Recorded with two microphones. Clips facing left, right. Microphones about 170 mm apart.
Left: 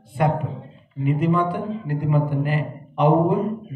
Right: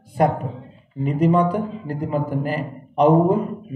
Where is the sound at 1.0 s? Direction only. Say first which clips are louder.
Right 3 dB; 35° right (ahead or behind).